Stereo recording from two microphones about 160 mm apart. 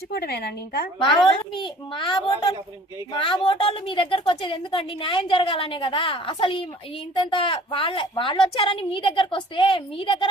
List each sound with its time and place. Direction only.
0.1 s a woman's voice: 80° left
0.9 s a woman's voice: 30° left (ahead or behind)